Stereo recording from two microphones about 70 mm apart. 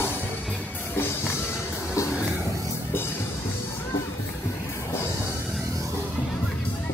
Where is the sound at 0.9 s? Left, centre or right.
Left.